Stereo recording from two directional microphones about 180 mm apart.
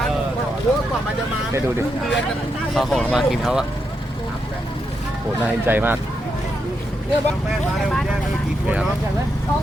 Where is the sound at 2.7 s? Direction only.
Centre (ahead or behind).